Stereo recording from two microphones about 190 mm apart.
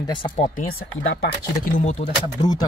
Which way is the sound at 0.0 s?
25° left (ahead or behind).